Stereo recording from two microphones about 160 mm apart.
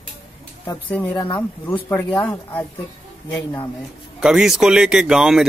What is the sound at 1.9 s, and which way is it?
Speech, 10° left (ahead or behind).